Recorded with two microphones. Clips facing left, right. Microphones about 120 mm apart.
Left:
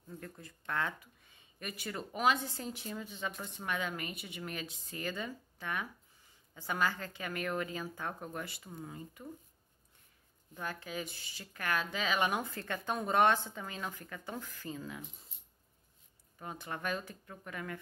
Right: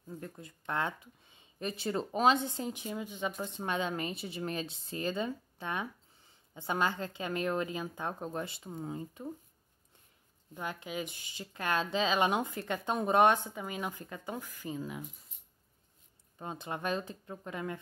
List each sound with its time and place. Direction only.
0.1 s speech: 20° right (ahead or behind)
10.5 s speech: 15° right (ahead or behind)
16.3 s speech: 25° right (ahead or behind)